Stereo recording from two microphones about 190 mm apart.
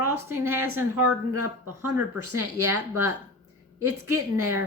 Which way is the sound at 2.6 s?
15° right (ahead or behind).